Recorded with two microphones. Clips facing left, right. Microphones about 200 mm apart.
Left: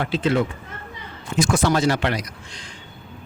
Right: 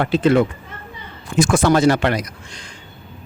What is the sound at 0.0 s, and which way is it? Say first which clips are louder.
A man's voice: right 6 dB; 55° right (ahead or behind).